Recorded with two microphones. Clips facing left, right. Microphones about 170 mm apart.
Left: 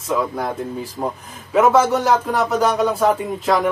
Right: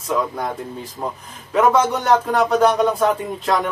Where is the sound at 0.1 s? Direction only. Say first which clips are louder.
Left 1 dB; 5° left (ahead or behind).